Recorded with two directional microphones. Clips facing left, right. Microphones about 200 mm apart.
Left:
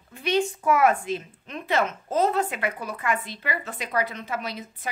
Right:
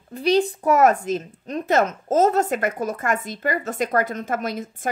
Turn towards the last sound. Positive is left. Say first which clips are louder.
# right 6 dB
turn(degrees=-45)  # may be behind; listen again after turning